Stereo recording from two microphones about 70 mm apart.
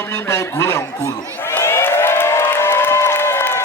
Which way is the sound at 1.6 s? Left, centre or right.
Left.